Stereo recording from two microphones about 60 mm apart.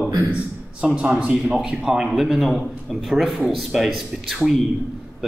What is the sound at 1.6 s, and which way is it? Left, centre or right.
A man's voice, centre.